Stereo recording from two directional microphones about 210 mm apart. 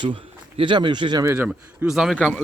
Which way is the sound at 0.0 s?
25° right (ahead or behind).